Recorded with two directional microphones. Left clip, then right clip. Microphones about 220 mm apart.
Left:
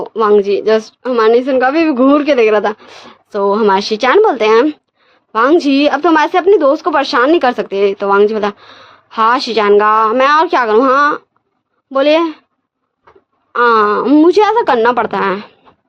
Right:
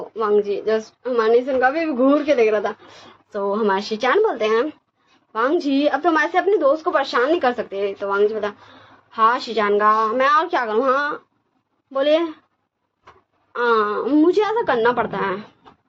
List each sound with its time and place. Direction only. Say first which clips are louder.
0.2 s a woman's voice: left 9 dB; 50° left (ahead or behind)
13.5 s a woman's voice: left 9 dB; 55° left (ahead or behind)